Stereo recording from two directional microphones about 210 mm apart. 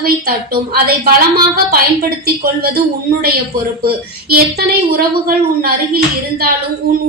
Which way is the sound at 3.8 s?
45° right (ahead or behind).